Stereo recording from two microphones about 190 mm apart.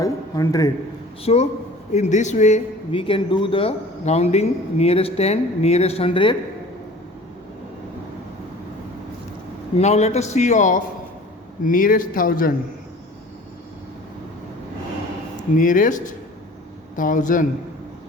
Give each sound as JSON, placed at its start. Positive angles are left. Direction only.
{"t": 0.0, "sound": "a man's voice", "side_deg": 20}
{"t": 1.2, "sound": "a man's voice", "side_deg": 35}
{"t": 9.7, "sound": "a man's voice", "side_deg": 35}
{"t": 15.5, "sound": "speech", "side_deg": 45}